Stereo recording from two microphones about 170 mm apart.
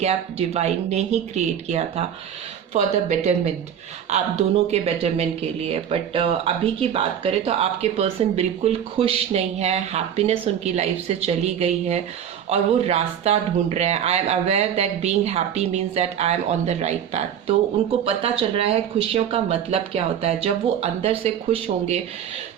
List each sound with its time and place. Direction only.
0.0 s speech: 40° right (ahead or behind)
4.7 s speech: 35° right (ahead or behind)